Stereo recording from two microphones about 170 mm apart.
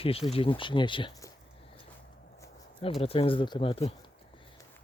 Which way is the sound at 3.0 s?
35° left (ahead or behind).